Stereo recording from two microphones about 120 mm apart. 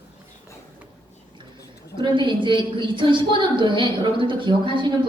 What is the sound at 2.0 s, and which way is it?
A woman's voice, 40° right (ahead or behind).